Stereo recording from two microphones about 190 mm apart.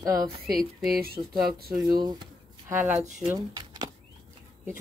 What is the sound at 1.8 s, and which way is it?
A woman's voice, 20° right (ahead or behind).